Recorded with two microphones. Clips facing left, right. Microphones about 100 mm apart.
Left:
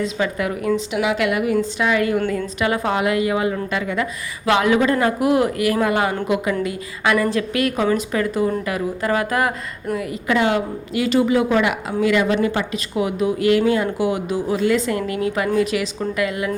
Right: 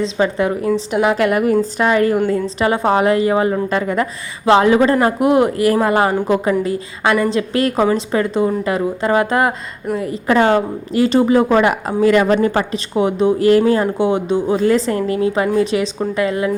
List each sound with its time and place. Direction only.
0.0 s a woman's voice: 30° right (ahead or behind)
0.9 s a woman's voice: 40° right (ahead or behind)
14.0 s a woman's voice: 25° right (ahead or behind)